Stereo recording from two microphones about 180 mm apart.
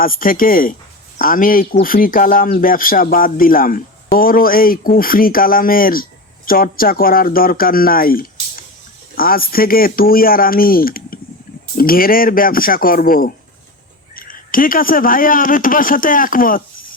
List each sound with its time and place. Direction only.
0.0 s speech: 50° left (ahead or behind)